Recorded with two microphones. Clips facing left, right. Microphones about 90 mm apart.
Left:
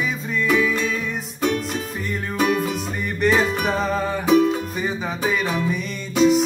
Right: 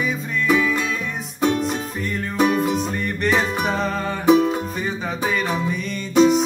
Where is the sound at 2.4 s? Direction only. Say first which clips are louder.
Right 2 dB; 15° right (ahead or behind).